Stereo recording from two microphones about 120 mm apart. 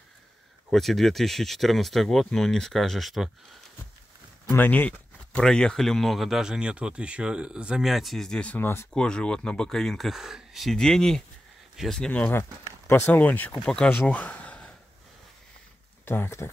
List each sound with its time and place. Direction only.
0.7 s speech: centre (ahead or behind)
4.5 s speech: 15° left (ahead or behind)
8.9 s speech: 5° left (ahead or behind)
16.1 s speech: 20° left (ahead or behind)